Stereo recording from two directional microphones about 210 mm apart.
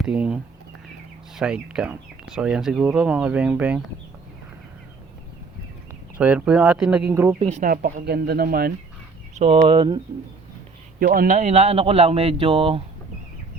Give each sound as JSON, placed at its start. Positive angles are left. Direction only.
{"t": 0.0, "sound": "speech", "side_deg": -5}
{"t": 1.4, "sound": "speech", "side_deg": -5}
{"t": 5.9, "sound": "speech", "side_deg": -5}
{"t": 7.3, "sound": "speech", "side_deg": -35}
{"t": 9.3, "sound": "speech", "side_deg": -30}
{"t": 11.0, "sound": "speech", "side_deg": -45}